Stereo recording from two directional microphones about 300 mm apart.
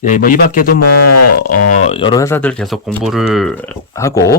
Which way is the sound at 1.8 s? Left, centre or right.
Centre.